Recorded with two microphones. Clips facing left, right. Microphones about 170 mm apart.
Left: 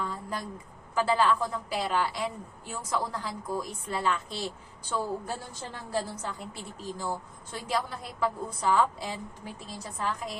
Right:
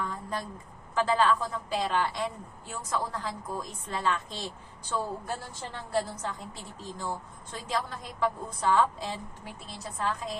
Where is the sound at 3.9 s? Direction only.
10° left (ahead or behind).